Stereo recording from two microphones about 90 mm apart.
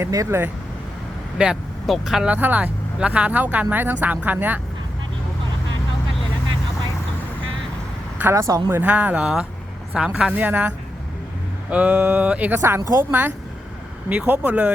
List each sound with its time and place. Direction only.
0.0 s a woman's voice: 35° right (ahead or behind)
1.4 s speech: 15° right (ahead or behind)
1.9 s speech: 5° right (ahead or behind)
2.3 s speech: 20° right (ahead or behind)
8.2 s a woman's voice: 30° right (ahead or behind)
8.7 s speech: 20° right (ahead or behind)
12.5 s a woman's voice: 30° right (ahead or behind)